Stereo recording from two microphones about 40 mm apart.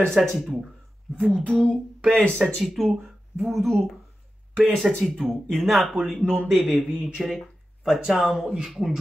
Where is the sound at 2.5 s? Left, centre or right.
Centre.